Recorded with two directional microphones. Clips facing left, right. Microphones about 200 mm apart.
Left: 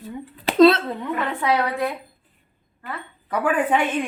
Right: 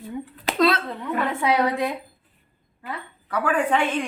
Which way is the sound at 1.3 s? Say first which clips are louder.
Right 1 dB; 15° right (ahead or behind).